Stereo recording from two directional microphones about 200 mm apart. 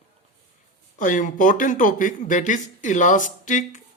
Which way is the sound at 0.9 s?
40° left (ahead or behind).